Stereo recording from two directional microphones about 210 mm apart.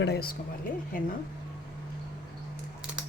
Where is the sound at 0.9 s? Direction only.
40° left (ahead or behind).